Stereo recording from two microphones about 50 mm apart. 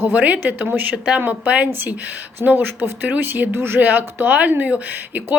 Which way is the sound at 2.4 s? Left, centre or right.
Right.